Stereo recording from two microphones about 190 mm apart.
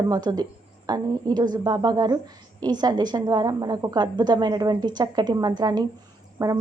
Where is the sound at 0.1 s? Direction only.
20° right (ahead or behind).